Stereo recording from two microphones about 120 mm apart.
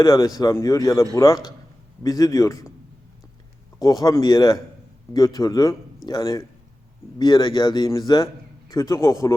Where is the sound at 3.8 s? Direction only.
30° left (ahead or behind).